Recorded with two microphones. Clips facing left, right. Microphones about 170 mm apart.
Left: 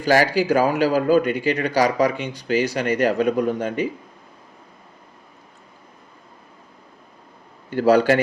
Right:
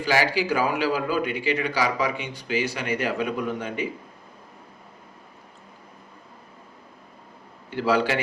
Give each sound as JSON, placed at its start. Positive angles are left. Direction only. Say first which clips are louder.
{"t": 0.0, "sound": "a man's voice", "louder": "left 5 dB", "side_deg": 45}
{"t": 7.7, "sound": "a man's voice", "louder": "left 7 dB", "side_deg": 45}